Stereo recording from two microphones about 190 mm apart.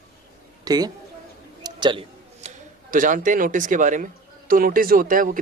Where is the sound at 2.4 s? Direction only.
45° right (ahead or behind).